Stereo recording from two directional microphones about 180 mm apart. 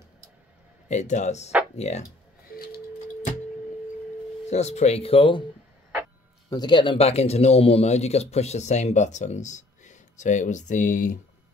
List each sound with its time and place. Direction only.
0.8 s speech: 40° left (ahead or behind)
2.4 s a sound: 55° left (ahead or behind)
4.5 s speech: 40° left (ahead or behind)
6.5 s speech: 25° left (ahead or behind); by 11.1 s 45° left (ahead or behind)